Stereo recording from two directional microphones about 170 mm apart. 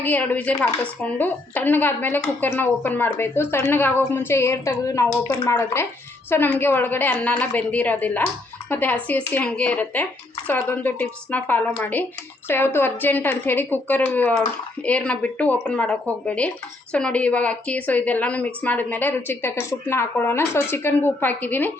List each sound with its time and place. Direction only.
0.0 s speech: 10° left (ahead or behind)